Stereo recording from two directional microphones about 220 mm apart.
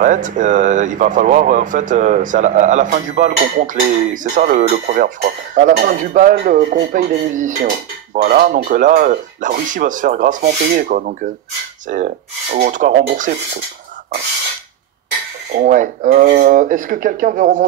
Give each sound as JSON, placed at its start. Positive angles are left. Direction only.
{"t": 0.0, "sound": "speech", "side_deg": -35}
{"t": 12.5, "sound": "speech", "side_deg": -40}
{"t": 15.5, "sound": "speech", "side_deg": -35}